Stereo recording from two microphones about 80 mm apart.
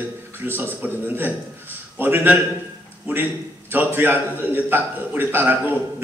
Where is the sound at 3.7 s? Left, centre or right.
Right.